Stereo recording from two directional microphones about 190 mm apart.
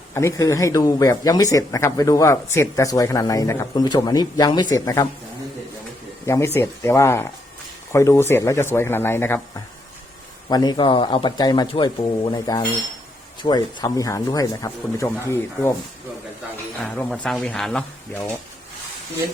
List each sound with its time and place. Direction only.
0.1 s speech: 15° left (ahead or behind)
6.2 s speech: 15° left (ahead or behind)
10.5 s speech: 20° left (ahead or behind)
16.8 s speech: 5° left (ahead or behind)